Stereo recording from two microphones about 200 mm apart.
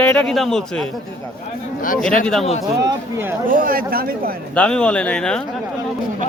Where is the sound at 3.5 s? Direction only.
45° right (ahead or behind).